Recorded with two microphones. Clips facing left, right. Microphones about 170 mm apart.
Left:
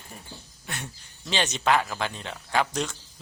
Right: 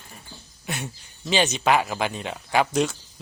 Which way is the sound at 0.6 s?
10° right (ahead or behind).